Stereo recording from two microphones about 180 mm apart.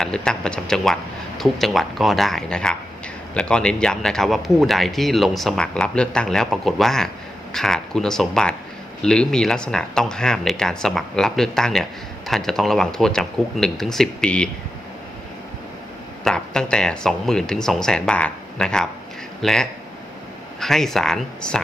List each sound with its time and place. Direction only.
0.0 s speech: 5° left (ahead or behind)
16.2 s speech: 5° left (ahead or behind)